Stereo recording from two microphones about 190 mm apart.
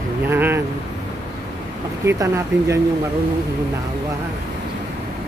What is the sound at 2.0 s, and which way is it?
Speech, 15° right (ahead or behind).